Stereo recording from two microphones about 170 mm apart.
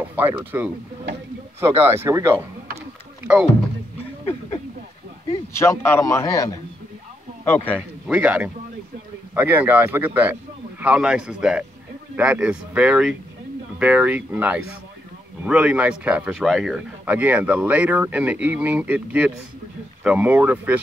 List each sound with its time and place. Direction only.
0.0 s speech: 10° right (ahead or behind)
5.5 s a man's voice: 15° left (ahead or behind)
8.1 s a man's voice: 5° right (ahead or behind)